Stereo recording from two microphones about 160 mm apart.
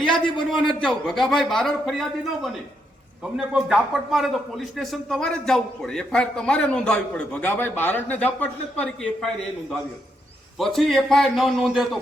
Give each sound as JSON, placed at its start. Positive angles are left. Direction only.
{"t": 0.6, "sound": "a man's voice", "side_deg": 5}